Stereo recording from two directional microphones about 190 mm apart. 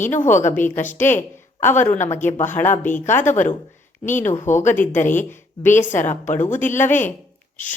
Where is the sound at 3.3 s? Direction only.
40° left (ahead or behind).